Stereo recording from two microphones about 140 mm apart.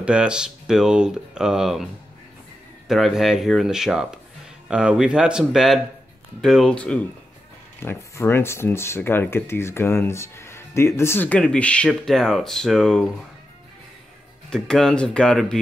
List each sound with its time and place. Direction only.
0.0 s speech: 5° right (ahead or behind)
2.9 s speech: centre (ahead or behind)
14.5 s speech: 5° left (ahead or behind)